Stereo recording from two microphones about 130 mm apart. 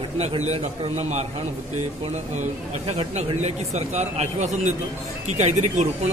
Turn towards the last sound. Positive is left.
turn(degrees=-65)  # may be behind; listen again after turning